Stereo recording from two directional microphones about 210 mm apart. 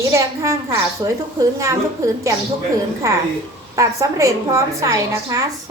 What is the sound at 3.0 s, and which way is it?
A woman's voice, 15° right (ahead or behind).